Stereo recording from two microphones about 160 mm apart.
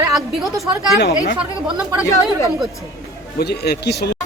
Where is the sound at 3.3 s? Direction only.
85° left.